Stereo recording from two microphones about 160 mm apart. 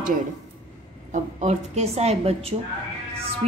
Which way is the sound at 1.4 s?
45° right (ahead or behind).